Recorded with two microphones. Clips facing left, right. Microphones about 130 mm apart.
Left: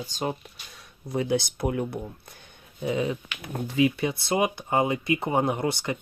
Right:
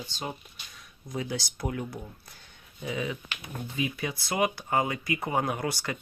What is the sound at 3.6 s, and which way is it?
Speech, 90° left.